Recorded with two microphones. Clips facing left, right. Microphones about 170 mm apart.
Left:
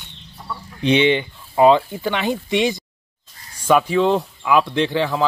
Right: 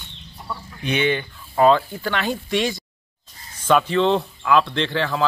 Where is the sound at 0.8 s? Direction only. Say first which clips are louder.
Left 6 dB; 25° left (ahead or behind).